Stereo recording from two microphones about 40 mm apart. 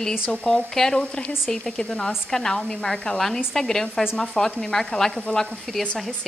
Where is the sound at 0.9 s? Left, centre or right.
Left.